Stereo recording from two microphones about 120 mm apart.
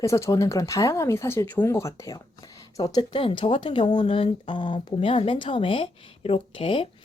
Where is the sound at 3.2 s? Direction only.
50° left (ahead or behind).